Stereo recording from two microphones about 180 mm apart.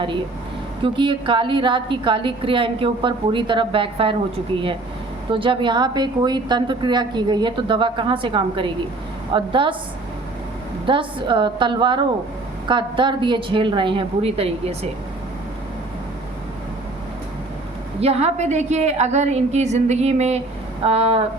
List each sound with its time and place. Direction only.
0.9 s a woman's voice: 25° right (ahead or behind)
5.3 s a woman's voice: 30° right (ahead or behind)
10.8 s a woman's voice: 25° right (ahead or behind)
18.0 s a woman's voice: 35° right (ahead or behind)